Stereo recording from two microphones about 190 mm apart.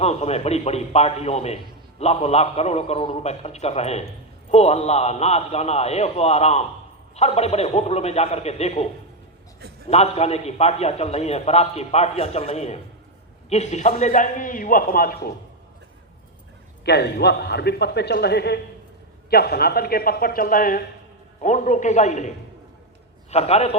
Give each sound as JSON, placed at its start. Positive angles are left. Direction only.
{"t": 0.0, "sound": "a man's voice", "side_deg": 35}
{"t": 9.9, "sound": "a man's voice", "side_deg": 35}
{"t": 16.8, "sound": "a man's voice", "side_deg": 60}
{"t": 23.3, "sound": "a man's voice", "side_deg": 35}